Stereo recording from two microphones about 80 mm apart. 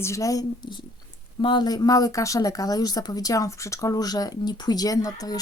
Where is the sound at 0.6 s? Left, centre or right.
Left.